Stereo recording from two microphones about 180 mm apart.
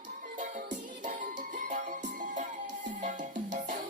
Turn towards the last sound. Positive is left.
turn(degrees=-45)  # may be behind; listen again after turning